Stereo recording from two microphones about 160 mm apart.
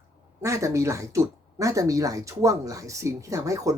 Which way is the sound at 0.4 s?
20° right (ahead or behind).